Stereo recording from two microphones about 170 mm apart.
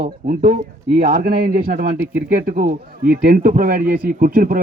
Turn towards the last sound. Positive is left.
turn(degrees=-55)  # may be behind; listen again after turning